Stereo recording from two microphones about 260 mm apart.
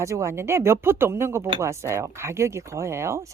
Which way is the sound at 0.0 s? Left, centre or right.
Centre.